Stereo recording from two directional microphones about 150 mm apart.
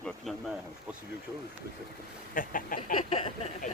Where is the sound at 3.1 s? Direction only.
40° left (ahead or behind).